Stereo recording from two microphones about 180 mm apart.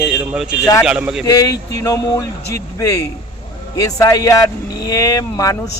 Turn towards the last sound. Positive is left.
turn(degrees=20)  # may be behind; listen again after turning